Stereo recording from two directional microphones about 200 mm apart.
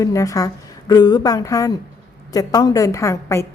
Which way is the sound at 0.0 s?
15° left (ahead or behind).